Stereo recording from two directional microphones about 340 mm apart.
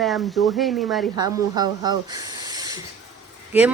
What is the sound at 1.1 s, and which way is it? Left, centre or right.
A man's voice, centre.